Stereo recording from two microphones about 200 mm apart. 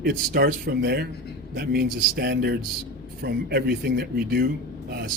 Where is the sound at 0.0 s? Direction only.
50° right (ahead or behind).